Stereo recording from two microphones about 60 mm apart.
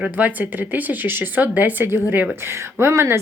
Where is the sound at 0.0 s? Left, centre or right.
Right.